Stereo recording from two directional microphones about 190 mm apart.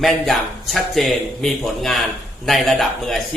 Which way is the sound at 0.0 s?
Centre (ahead or behind).